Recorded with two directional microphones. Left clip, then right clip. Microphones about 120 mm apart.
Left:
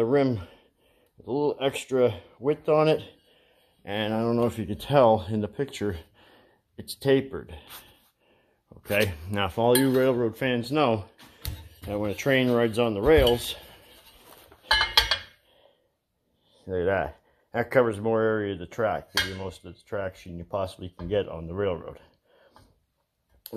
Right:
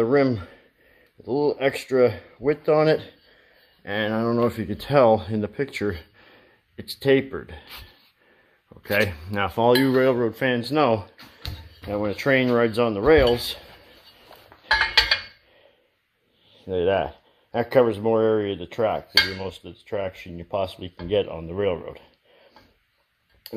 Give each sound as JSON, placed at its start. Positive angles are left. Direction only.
{"t": 0.0, "sound": "speech", "side_deg": 0}
{"t": 9.1, "sound": "speech", "side_deg": 20}
{"t": 9.6, "sound": "speech", "side_deg": 5}
{"t": 14.7, "sound": "a sound", "side_deg": 35}
{"t": 16.5, "sound": "speech", "side_deg": 10}